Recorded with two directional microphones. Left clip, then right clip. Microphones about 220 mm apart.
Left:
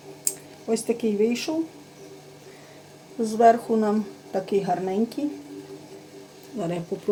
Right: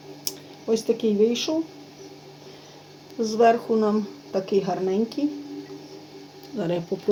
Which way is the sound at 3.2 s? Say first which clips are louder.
Left 1 dB; 15° right (ahead or behind).